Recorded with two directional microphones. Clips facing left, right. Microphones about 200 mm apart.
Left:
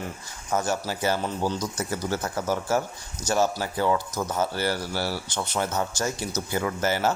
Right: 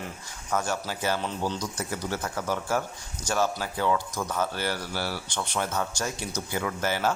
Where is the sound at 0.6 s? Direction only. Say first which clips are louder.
Left 3 dB; 40° left (ahead or behind).